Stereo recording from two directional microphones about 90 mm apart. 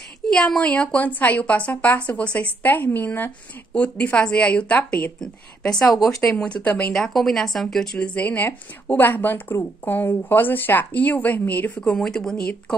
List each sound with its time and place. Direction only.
0.3 s a woman's voice: 10° left (ahead or behind)
5.2 s a woman's voice: 5° left (ahead or behind)
6.9 s a woman's voice: 5° left (ahead or behind); by 11.8 s 20° left (ahead or behind)
11.8 s a woman's voice: 5° left (ahead or behind)